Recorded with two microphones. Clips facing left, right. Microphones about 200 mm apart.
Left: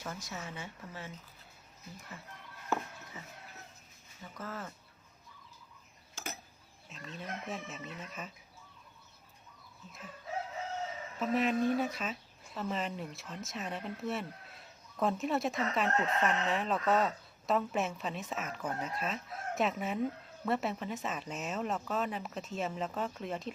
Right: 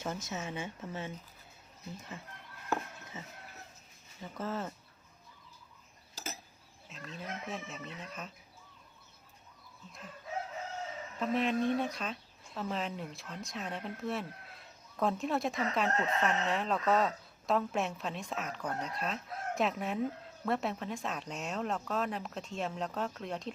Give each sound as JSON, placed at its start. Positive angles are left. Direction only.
{"t": 0.0, "sound": "speech", "side_deg": -25}
{"t": 2.6, "sound": "a sound", "side_deg": -20}
{"t": 4.4, "sound": "speech", "side_deg": -25}
{"t": 6.8, "sound": "speech", "side_deg": 0}
{"t": 11.2, "sound": "speech", "side_deg": 0}